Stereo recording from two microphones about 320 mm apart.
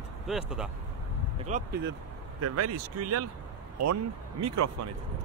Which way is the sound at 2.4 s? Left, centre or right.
Right.